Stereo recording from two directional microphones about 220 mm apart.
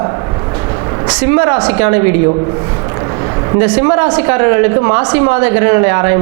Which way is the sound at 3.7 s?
20° right (ahead or behind).